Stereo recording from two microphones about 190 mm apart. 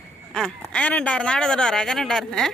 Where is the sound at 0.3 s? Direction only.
5° left (ahead or behind).